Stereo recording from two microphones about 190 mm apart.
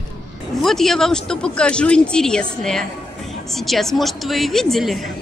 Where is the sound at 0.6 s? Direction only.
Centre (ahead or behind).